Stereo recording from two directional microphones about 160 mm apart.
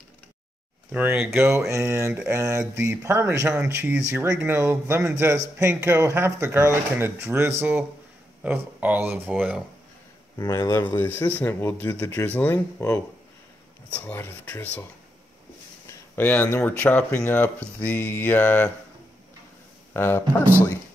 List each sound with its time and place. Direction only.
0.9 s speech: 10° right (ahead or behind)
10.3 s speech: 20° left (ahead or behind)
14.0 s speech: 10° left (ahead or behind)
15.9 s speech: 10° left (ahead or behind)
19.9 s speech: 15° left (ahead or behind)